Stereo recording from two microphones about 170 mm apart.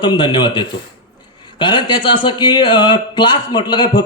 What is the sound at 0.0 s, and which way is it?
A man's voice, 25° left (ahead or behind).